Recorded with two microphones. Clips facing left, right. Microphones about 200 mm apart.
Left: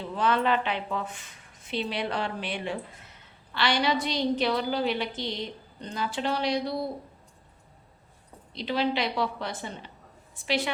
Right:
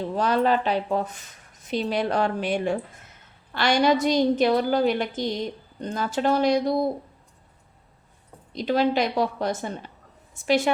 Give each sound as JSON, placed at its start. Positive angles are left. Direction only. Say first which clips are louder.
{"t": 0.0, "sound": "a woman's voice", "louder": "right 4 dB", "side_deg": -40}
{"t": 8.5, "sound": "a woman's voice", "louder": "right 6 dB", "side_deg": -45}